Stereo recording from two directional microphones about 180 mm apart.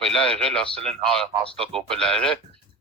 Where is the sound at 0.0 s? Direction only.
5° left (ahead or behind).